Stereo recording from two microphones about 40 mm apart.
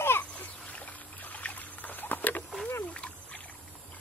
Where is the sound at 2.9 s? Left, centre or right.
Left.